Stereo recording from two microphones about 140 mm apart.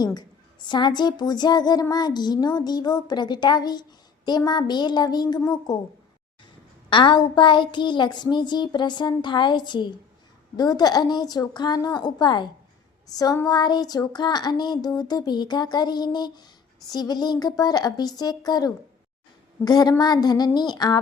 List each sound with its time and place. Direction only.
0.0 s a woman's voice: 30° left (ahead or behind)
6.9 s a child's voice: 35° left (ahead or behind)